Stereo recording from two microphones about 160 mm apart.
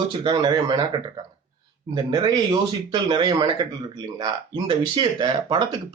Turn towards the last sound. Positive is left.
turn(degrees=-30)  # may be behind; listen again after turning